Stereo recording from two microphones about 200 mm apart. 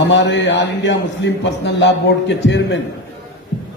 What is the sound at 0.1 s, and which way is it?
A man's voice, 65° left (ahead or behind).